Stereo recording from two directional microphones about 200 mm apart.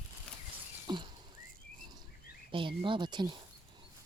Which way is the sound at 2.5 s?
25° right (ahead or behind).